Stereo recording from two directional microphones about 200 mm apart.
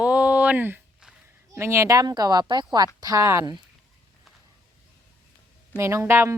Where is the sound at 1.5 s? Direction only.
15° right (ahead or behind).